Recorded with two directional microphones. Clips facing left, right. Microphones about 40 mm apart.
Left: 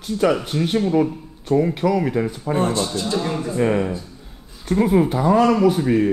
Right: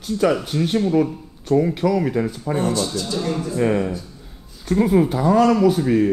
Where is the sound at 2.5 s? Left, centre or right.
Left.